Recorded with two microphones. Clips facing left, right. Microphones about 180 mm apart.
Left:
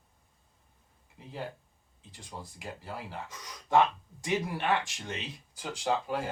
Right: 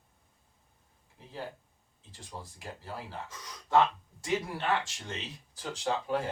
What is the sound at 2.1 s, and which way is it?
Speech, 15° left (ahead or behind).